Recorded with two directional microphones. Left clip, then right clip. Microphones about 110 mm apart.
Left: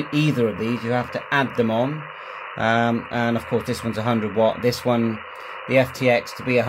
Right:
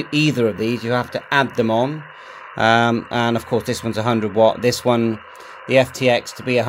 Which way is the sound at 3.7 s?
90° right.